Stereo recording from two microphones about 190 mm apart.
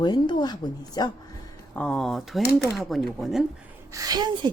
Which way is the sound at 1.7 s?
5° left (ahead or behind).